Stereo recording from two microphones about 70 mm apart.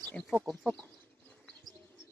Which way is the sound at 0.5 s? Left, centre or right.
Centre.